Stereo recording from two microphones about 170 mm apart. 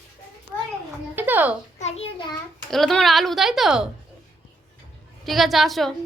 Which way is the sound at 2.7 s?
Centre (ahead or behind).